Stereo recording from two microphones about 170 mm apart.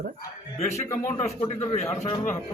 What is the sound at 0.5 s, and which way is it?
A man's voice, 40° left (ahead or behind).